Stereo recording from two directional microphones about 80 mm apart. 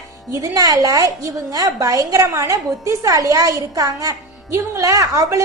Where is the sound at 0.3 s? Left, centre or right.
Right.